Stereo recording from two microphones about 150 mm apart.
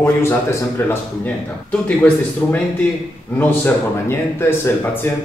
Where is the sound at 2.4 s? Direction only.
10° left (ahead or behind).